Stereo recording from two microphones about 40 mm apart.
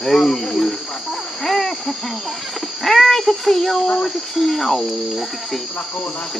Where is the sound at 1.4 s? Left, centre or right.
Centre.